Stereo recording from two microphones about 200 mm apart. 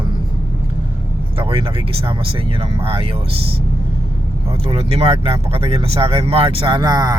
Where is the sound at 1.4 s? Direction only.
25° right (ahead or behind).